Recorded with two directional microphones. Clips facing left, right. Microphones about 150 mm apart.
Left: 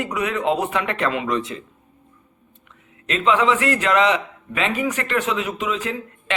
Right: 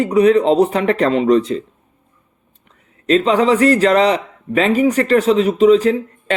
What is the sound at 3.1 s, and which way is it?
A man's voice, 40° right (ahead or behind).